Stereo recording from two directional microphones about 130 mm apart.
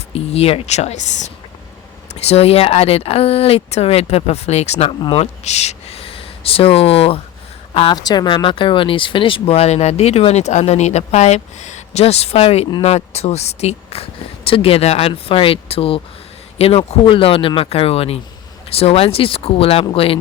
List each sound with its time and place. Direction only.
0.1 s speech: 50° left (ahead or behind)
4.9 s speech: 35° left (ahead or behind)
5.2 s speech: 60° left (ahead or behind)
7.9 s speech: 30° left (ahead or behind)